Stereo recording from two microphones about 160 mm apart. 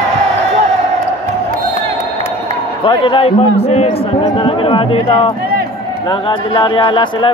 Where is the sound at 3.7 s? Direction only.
45° left (ahead or behind).